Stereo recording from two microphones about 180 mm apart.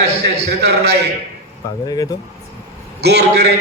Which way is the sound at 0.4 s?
65° right (ahead or behind).